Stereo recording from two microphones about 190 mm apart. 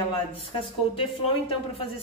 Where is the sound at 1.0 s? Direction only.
30° left (ahead or behind).